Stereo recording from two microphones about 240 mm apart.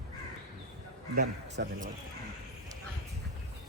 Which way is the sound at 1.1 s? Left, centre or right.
Right.